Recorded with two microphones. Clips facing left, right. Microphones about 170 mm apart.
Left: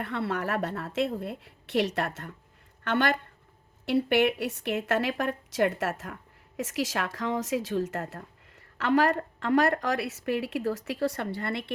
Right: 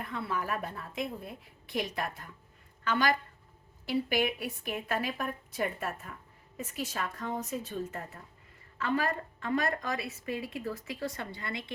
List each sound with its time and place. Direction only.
0.0 s a woman's voice: 70° left (ahead or behind)